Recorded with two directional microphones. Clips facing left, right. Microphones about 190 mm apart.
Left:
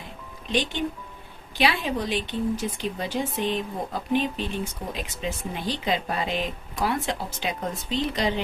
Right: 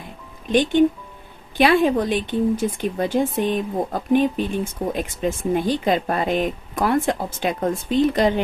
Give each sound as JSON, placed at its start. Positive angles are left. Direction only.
{"t": 0.4, "sound": "speech", "side_deg": -50}